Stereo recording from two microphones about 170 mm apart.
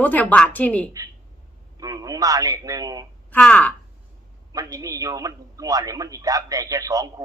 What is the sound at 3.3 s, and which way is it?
Speech, 5° left (ahead or behind).